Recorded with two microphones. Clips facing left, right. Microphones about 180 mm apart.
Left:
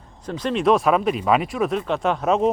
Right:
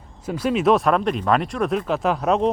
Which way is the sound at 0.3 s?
5° right (ahead or behind).